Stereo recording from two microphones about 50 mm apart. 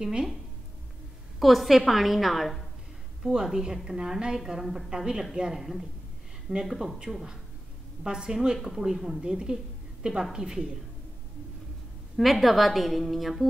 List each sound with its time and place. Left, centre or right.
0.0 s a woman's voice: centre
1.4 s a woman's voice: centre
3.2 s a woman's voice: centre
12.2 s a woman's voice: centre